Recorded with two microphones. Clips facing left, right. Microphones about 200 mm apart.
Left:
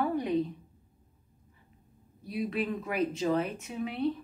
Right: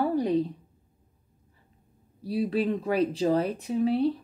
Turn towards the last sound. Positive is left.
turn(degrees=-35)  # may be behind; listen again after turning